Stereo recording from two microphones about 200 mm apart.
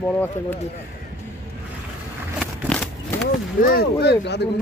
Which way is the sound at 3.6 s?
50° left (ahead or behind).